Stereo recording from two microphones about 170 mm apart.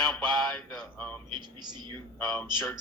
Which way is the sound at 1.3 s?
25° right (ahead or behind).